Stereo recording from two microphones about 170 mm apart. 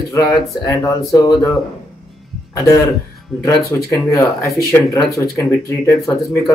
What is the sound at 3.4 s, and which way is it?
Speech, 15° left (ahead or behind).